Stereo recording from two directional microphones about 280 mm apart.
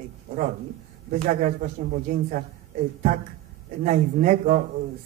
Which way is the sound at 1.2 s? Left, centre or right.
Right.